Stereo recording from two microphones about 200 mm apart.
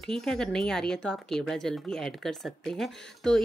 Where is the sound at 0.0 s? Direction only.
5° left (ahead or behind).